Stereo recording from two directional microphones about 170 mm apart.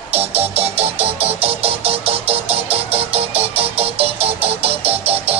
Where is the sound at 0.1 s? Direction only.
35° right (ahead or behind).